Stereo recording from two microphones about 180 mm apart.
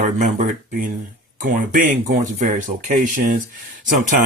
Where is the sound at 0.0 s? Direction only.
45° right (ahead or behind).